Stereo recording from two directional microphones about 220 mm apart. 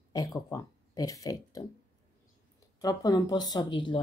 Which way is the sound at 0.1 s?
15° left (ahead or behind).